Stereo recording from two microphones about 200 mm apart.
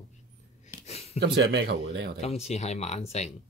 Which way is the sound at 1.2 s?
60° right (ahead or behind).